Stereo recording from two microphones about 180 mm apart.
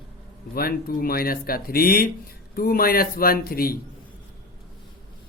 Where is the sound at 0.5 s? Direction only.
55° left (ahead or behind).